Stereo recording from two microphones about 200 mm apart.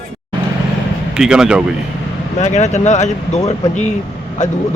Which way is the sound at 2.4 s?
35° left (ahead or behind).